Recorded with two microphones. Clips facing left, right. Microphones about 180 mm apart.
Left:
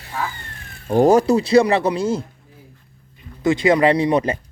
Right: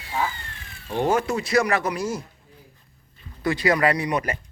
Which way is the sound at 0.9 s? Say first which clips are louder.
Left 9 dB; 40° left (ahead or behind).